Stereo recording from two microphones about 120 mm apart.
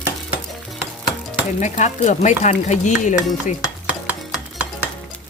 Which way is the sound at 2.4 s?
80° left.